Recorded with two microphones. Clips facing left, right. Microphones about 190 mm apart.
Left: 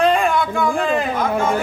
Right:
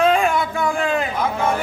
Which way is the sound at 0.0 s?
Centre (ahead or behind).